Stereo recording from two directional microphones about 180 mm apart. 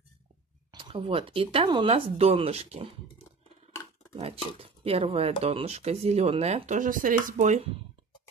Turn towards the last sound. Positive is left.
turn(degrees=-45)  # may be behind; listen again after turning